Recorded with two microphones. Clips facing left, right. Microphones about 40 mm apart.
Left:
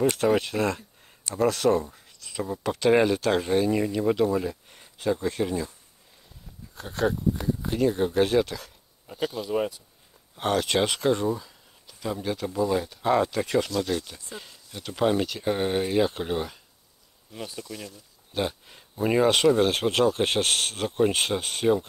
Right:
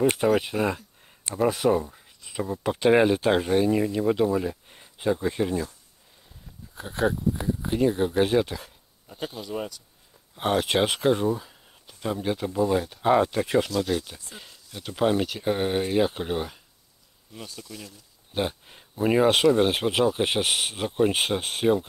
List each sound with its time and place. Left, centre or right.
0.4 s speech: centre
2.1 s a sound: centre
2.6 s speech: centre
3.4 s speech: centre
6.7 s speech: centre
11.3 s a sound: centre
12.5 s speech: centre
17.3 s speech: centre
18.3 s speech: centre